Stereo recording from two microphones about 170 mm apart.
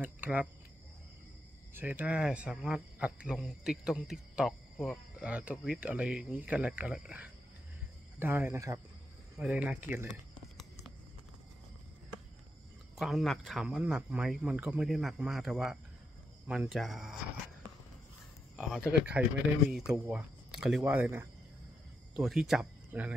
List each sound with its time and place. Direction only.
0.0 s speech: 10° right (ahead or behind)
1.7 s speech: 10° right (ahead or behind)
9.4 s speech: 5° right (ahead or behind)
12.9 s speech: centre (ahead or behind)
18.7 s speech: 5° right (ahead or behind)